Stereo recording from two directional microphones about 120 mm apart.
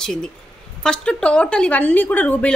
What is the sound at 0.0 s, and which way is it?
A woman's voice, 5° left (ahead or behind).